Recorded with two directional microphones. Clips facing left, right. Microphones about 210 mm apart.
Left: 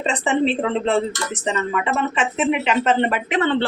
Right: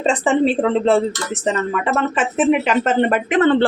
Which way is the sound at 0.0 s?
45° right (ahead or behind).